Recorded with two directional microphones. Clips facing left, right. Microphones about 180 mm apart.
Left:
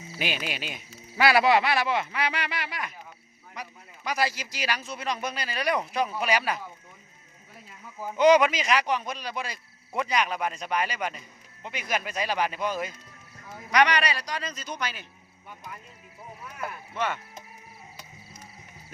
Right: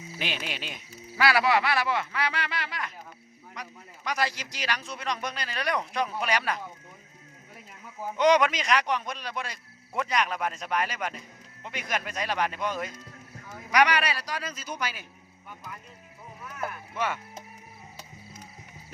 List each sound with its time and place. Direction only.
0.2 s speech: 5° left (ahead or behind)
1.1 s speech: 20° left (ahead or behind); by 6.6 s 5° left (ahead or behind)
8.1 s speech: 5° left (ahead or behind)
13.7 s a man's voice: 10° right (ahead or behind)
16.9 s speech: 10° right (ahead or behind)